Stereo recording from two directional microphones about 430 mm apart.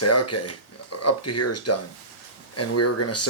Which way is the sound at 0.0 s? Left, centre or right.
Left.